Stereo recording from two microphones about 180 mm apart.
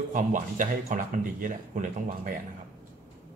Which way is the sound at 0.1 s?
45° right (ahead or behind).